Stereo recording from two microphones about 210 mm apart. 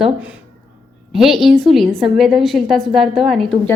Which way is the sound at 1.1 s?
Centre (ahead or behind).